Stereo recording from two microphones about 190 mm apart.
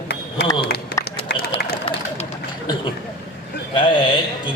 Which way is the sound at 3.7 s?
25° left (ahead or behind).